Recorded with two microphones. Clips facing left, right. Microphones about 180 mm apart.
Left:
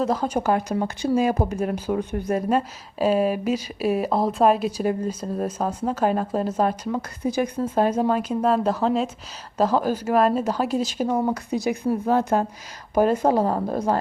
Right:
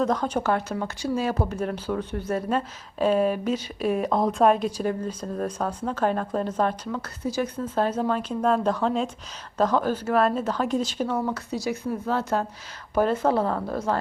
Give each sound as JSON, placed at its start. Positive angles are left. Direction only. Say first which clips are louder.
{"t": 0.0, "sound": "speech", "louder": "left 1 dB", "side_deg": 5}
{"t": 13.4, "sound": "a woman's voice", "louder": "left 3 dB", "side_deg": 35}
{"t": 13.7, "sound": "speech", "louder": "left 3 dB", "side_deg": 20}